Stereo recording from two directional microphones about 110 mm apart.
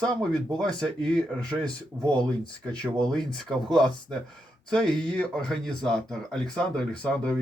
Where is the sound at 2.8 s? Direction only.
5° left (ahead or behind).